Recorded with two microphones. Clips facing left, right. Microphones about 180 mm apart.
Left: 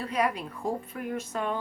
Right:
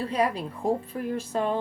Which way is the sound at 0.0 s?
30° right (ahead or behind).